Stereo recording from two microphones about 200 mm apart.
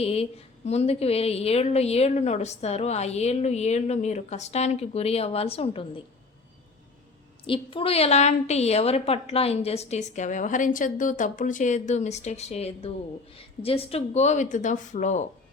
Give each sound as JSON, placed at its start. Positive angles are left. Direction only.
{"t": 0.0, "sound": "a woman's voice", "side_deg": 30}
{"t": 7.4, "sound": "a woman's voice", "side_deg": 25}